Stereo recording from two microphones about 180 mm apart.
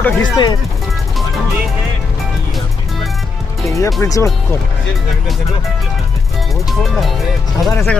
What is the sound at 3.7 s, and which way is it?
Speech, 15° left (ahead or behind).